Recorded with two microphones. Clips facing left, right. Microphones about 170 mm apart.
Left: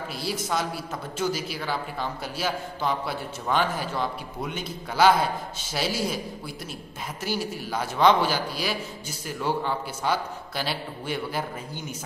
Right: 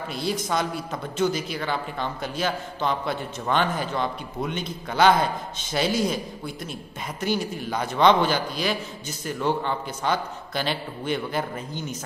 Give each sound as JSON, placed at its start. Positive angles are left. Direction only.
{"t": 0.1, "sound": "a man's voice", "side_deg": 5}